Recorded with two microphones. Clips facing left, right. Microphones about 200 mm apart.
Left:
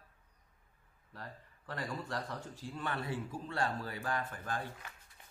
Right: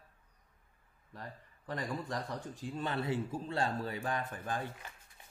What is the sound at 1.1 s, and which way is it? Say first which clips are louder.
Speech: right 1 dB; 15° right (ahead or behind).